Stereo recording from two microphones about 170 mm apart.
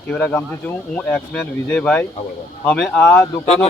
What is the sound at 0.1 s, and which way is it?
Speech, 10° left (ahead or behind).